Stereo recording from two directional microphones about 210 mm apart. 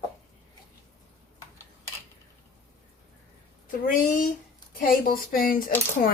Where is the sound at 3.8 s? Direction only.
40° left (ahead or behind).